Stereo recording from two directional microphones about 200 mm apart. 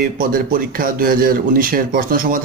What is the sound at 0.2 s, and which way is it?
Speech, 45° right (ahead or behind).